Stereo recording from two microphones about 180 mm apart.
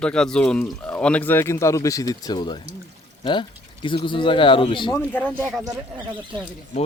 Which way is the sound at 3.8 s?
25° left (ahead or behind).